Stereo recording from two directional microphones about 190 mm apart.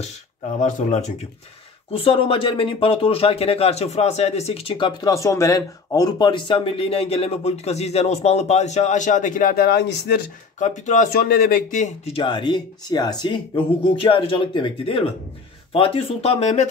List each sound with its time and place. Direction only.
0.6 s speech: 40° left (ahead or behind); by 10.2 s 60° left (ahead or behind)
10.6 s speech: 40° left (ahead or behind)
12.2 s speech: 25° left (ahead or behind)